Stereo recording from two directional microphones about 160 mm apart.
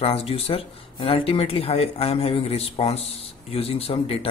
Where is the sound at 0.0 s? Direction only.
35° left (ahead or behind).